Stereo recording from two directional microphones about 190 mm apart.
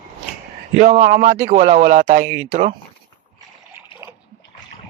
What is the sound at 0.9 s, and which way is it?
Speech, 40° right (ahead or behind).